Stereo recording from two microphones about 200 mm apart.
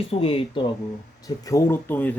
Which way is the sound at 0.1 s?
30° left (ahead or behind).